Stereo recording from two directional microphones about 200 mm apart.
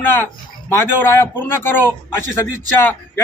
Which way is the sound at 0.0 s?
10° left (ahead or behind).